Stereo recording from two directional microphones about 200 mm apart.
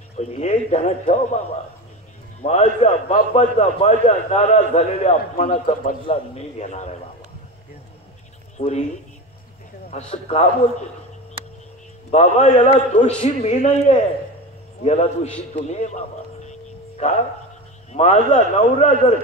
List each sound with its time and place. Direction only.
0.2 s a man's voice: 35° left (ahead or behind)
2.4 s a man's voice: 35° left (ahead or behind)
8.5 s a man's voice: 35° left (ahead or behind)
9.8 s a man's voice: 30° left (ahead or behind)
12.1 s a man's voice: 35° left (ahead or behind)
15.5 s music: 35° left (ahead or behind)
17.9 s a man's voice: 35° left (ahead or behind)